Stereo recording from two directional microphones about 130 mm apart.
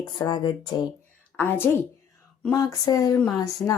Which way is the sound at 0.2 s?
35° left (ahead or behind).